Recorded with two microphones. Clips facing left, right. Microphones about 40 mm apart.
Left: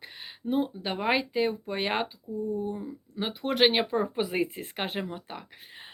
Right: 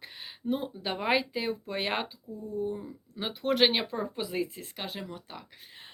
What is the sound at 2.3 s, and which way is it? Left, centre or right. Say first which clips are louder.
Speech: left 8 dB; centre.